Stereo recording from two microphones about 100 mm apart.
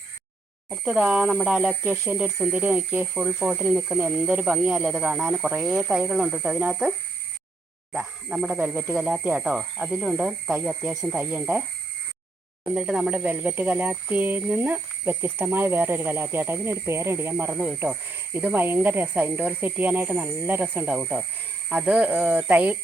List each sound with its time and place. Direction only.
0.7 s speech: 10° right (ahead or behind)
7.9 s speech: 5° right (ahead or behind)
8.5 s speech: 20° right (ahead or behind)
12.6 s speech: 10° right (ahead or behind)